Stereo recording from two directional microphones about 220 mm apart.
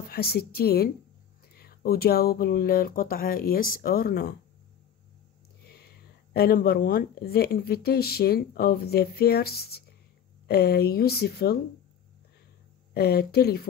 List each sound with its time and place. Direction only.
0.1 s speech: 45° left (ahead or behind)
6.3 s speech: 45° left (ahead or behind)
12.9 s speech: 45° left (ahead or behind)